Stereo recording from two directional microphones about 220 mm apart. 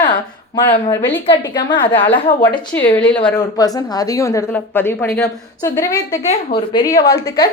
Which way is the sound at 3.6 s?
15° left (ahead or behind).